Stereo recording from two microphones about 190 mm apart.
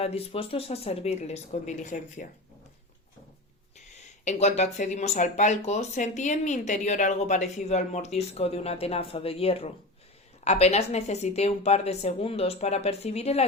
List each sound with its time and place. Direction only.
0.0 s speech: 30° left (ahead or behind)
3.8 s speech: 40° left (ahead or behind)